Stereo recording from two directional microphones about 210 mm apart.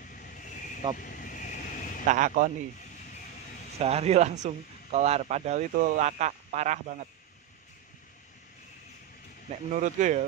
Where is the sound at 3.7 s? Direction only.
30° right (ahead or behind).